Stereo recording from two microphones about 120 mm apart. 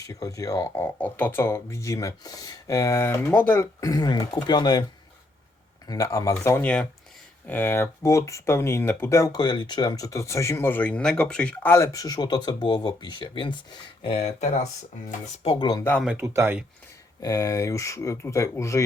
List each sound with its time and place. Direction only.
0.0 s speech: 30° left (ahead or behind)
0.8 s speech: 15° left (ahead or behind)
6.4 s speech: 15° left (ahead or behind)
11.7 s speech: 25° left (ahead or behind); by 14.3 s 45° left (ahead or behind)
14.3 s speech: 70° left (ahead or behind)
15.4 s speech: 40° left (ahead or behind)
16.1 s speech: 20° right (ahead or behind)
17.2 s speech: 30° left (ahead or behind)